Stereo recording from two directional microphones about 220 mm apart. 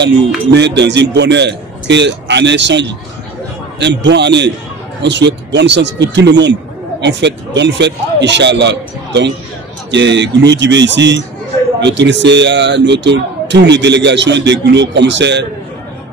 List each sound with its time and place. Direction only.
0.5 s speech: 55° right (ahead or behind)